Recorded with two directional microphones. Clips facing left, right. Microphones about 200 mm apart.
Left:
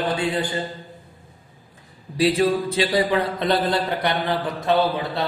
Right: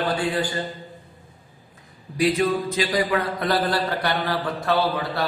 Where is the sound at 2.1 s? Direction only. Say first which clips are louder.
Left 2 dB; 30° left (ahead or behind).